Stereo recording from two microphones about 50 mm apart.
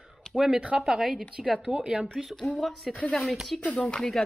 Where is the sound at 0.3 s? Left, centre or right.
Centre.